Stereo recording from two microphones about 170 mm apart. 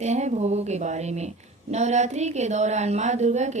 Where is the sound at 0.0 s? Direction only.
40° right (ahead or behind).